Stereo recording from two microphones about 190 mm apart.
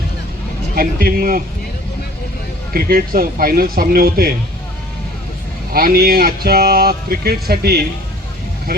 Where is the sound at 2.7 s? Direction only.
50° right (ahead or behind).